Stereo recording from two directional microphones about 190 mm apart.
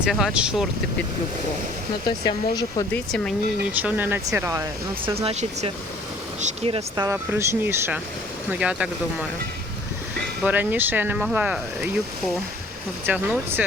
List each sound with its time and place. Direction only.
0.0 s speech: centre (ahead or behind)
2.0 s speech: 20° left (ahead or behind)
2.9 s speech: 5° left (ahead or behind)
3.7 s speech: 10° right (ahead or behind)
5.0 s speech: 30° right (ahead or behind)
6.9 s speech: 15° right (ahead or behind)
10.4 s speech: 10° right (ahead or behind)
13.1 s speech: 10° right (ahead or behind)